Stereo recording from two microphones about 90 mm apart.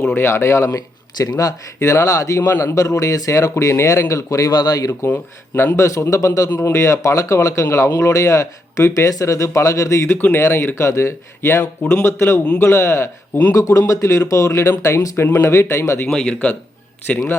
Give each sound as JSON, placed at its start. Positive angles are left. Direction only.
{"t": 0.0, "sound": "speech", "side_deg": 25}
{"t": 1.2, "sound": "speech", "side_deg": 40}
{"t": 2.5, "sound": "speech", "side_deg": 25}
{"t": 2.7, "sound": "speech", "side_deg": 35}
{"t": 4.9, "sound": "speech", "side_deg": 25}
{"t": 5.7, "sound": "speech", "side_deg": 35}
{"t": 6.5, "sound": "speech", "side_deg": 25}
{"t": 16.0, "sound": "a man's voice", "side_deg": 5}